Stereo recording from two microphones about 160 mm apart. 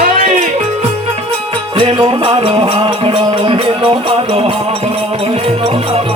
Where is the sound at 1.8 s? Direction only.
35° right (ahead or behind).